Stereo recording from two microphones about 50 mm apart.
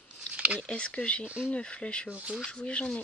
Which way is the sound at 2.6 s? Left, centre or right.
Left.